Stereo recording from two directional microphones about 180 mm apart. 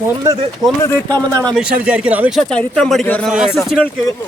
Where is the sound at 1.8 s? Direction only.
5° right (ahead or behind).